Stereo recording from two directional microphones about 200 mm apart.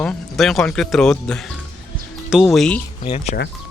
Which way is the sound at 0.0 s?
5° left (ahead or behind).